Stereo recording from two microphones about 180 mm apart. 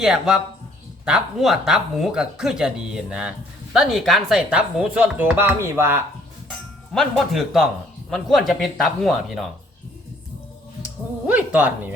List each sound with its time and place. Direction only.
0.0 s speech: 5° right (ahead or behind)
6.9 s speech: centre (ahead or behind)
10.8 s speech: 10° right (ahead or behind)